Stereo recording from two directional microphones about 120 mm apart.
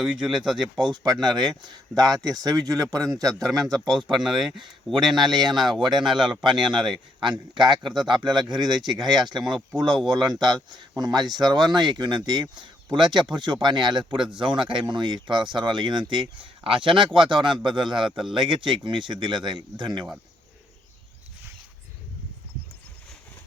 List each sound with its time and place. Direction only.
0.0 s speech: 5° right (ahead or behind)
0.9 s speech: 35° right (ahead or behind)
4.1 s speech: centre (ahead or behind)
6.4 s speech: 40° right (ahead or behind)